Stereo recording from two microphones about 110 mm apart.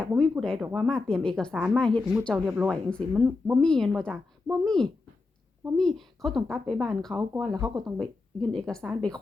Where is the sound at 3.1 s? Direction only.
5° right (ahead or behind).